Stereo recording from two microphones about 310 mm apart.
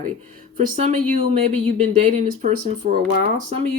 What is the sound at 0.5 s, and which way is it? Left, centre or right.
Speech, right.